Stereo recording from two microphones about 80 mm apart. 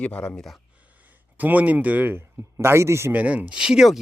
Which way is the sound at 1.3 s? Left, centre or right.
Right.